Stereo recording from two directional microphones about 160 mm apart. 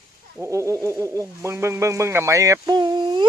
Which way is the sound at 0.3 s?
15° right (ahead or behind).